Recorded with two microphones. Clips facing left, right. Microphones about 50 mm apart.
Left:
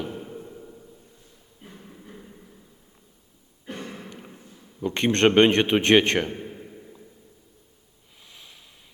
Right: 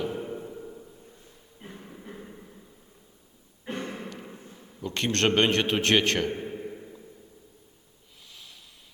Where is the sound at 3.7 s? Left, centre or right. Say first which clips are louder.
Right 2 dB; right.